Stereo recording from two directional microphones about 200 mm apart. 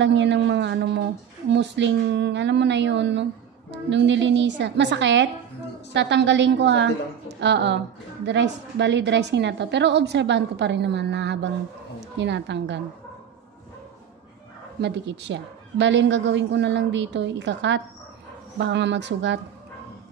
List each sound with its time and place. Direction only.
0.0 s a woman's voice: 65° right (ahead or behind)
14.8 s a woman's voice: 60° right (ahead or behind)